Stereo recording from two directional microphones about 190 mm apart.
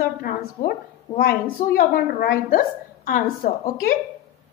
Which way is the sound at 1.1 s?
20° left (ahead or behind).